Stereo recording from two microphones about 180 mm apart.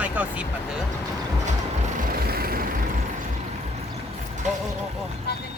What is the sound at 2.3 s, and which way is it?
Vehicle, 55° right (ahead or behind).